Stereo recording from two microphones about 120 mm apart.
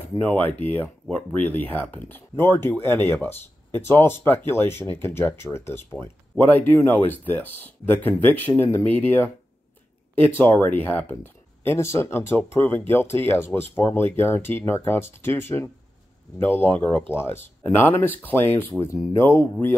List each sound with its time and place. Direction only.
0.2 s speech: 15° left (ahead or behind)
10.3 s speech: 15° left (ahead or behind)